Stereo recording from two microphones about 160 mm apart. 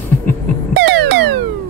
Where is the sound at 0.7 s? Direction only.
90° right.